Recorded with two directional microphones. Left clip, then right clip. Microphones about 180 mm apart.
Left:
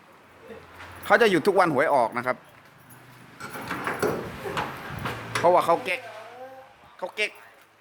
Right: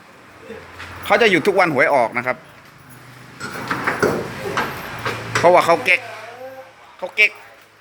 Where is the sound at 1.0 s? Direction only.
35° left (ahead or behind).